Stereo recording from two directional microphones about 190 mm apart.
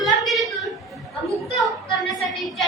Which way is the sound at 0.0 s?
Centre (ahead or behind).